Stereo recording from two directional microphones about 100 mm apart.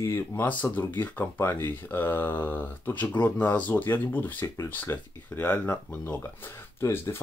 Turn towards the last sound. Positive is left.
turn(degrees=25)  # may be behind; listen again after turning